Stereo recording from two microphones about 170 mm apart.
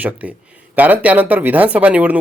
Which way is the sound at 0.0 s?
10° right (ahead or behind).